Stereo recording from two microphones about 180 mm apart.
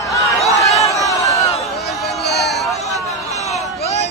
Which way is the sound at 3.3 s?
40° left (ahead or behind).